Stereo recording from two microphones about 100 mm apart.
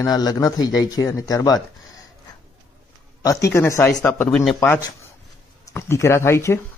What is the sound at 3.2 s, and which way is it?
Speech, 35° left (ahead or behind).